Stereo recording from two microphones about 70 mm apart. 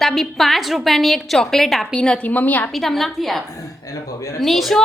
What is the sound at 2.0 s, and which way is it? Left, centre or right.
Speech, centre.